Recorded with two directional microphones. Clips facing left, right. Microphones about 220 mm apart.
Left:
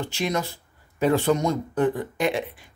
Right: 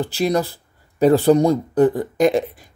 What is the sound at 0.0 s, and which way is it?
Speech, 35° right (ahead or behind).